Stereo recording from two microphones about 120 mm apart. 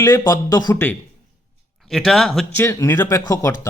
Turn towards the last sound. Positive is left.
turn(degrees=25)  # may be behind; listen again after turning